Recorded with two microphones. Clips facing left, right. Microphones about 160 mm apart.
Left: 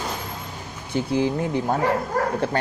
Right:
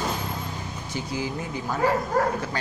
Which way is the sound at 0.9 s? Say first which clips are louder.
Left 8 dB; 60° left (ahead or behind).